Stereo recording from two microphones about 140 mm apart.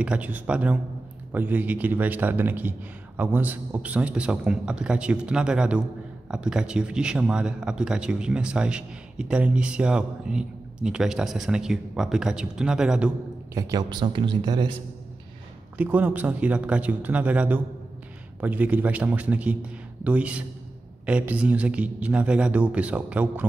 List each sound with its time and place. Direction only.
0.0 s a man's voice: 10° right (ahead or behind)
13.6 s speech: 25° right (ahead or behind)
15.8 s a man's voice: 10° right (ahead or behind)